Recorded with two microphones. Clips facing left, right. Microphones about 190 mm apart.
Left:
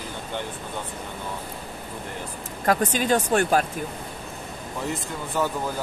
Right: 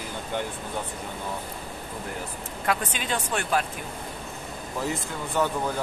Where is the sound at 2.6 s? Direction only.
40° left (ahead or behind).